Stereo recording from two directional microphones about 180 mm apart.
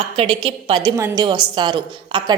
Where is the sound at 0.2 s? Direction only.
30° right (ahead or behind).